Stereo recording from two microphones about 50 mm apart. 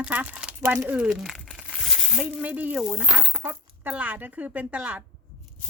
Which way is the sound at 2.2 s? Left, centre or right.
Right.